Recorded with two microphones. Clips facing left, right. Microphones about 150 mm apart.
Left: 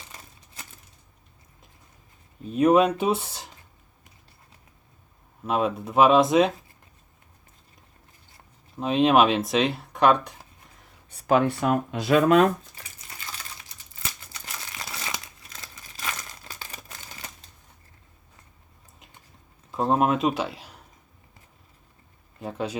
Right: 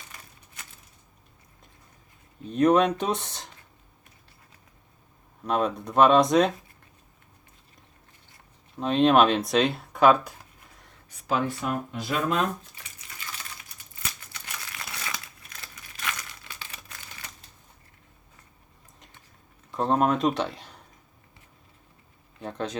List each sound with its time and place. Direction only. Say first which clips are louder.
2.4 s speech: left 2 dB; 5° left (ahead or behind)
5.4 s speech: left 1 dB; 5° left (ahead or behind)
8.8 s speech: even; 5° left (ahead or behind)
11.3 s speech: left 6 dB; 60° left (ahead or behind); by 12.5 s 80° left
14.7 s crumpling: left 2 dB; 25° left (ahead or behind)
16.0 s crumpling: left 1 dB; 40° left (ahead or behind)
19.7 s speech: left 1 dB; 5° left (ahead or behind)
22.4 s speech: left 2 dB; 5° left (ahead or behind)